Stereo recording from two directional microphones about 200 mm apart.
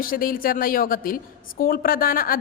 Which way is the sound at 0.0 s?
45° left (ahead or behind).